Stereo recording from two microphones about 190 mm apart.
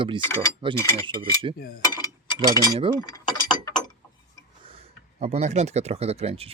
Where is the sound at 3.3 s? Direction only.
20° left (ahead or behind).